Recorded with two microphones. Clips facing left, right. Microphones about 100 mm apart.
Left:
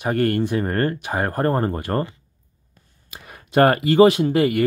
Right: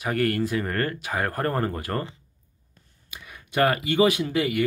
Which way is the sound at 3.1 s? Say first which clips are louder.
Left 7 dB; 40° left (ahead or behind).